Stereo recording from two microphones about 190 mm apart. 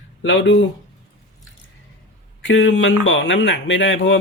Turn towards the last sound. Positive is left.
turn(degrees=80)